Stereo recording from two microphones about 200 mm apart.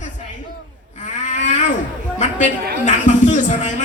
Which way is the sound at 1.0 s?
35° left (ahead or behind).